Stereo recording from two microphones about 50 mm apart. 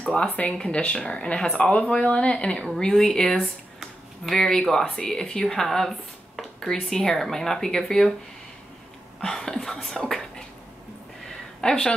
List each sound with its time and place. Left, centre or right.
0.4 s speech: centre
2.8 s speech: centre
9.2 s a sound: centre
11.6 s a woman's voice: centre